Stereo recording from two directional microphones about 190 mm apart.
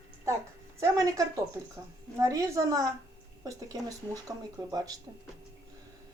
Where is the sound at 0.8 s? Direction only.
15° right (ahead or behind).